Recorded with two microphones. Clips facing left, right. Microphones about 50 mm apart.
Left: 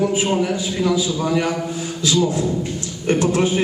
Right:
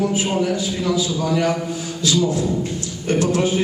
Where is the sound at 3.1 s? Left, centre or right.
Left.